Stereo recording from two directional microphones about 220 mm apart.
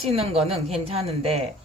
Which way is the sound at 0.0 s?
25° right (ahead or behind).